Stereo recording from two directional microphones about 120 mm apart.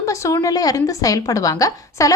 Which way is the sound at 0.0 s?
25° left (ahead or behind).